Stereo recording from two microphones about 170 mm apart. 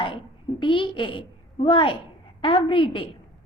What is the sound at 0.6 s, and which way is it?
A woman's voice, 30° left (ahead or behind).